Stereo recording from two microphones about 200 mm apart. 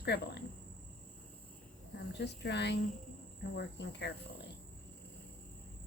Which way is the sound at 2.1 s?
60° left (ahead or behind).